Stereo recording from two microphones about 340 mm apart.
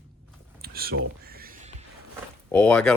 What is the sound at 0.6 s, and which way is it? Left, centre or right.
Whispering, right.